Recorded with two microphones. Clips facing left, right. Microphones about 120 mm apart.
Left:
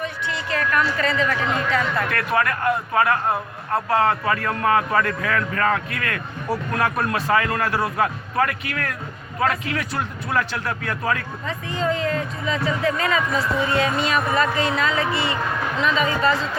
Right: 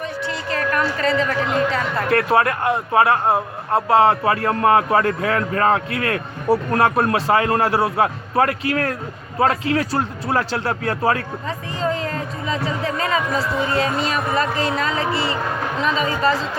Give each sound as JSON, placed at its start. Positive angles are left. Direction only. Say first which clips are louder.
{"t": 0.0, "sound": "a woman's voice", "louder": "right 2 dB", "side_deg": -40}